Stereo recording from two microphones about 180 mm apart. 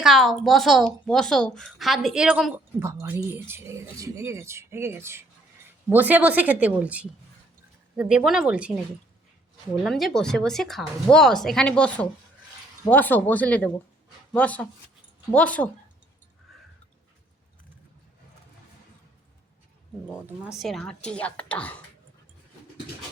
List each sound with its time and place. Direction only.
0.0 s speech: centre (ahead or behind)
9.8 s speech: centre (ahead or behind)
16.5 s a sound: centre (ahead or behind)
20.1 s speech: 5° right (ahead or behind)